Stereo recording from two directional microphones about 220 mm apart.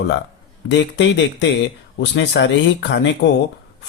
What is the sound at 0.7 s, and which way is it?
A man's voice, 55° left (ahead or behind).